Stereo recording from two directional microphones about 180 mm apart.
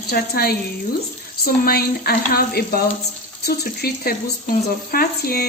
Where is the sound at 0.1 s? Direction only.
55° left (ahead or behind).